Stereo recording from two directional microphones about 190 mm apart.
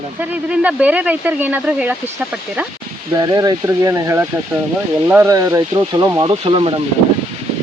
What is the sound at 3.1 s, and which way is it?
Speech, 20° right (ahead or behind).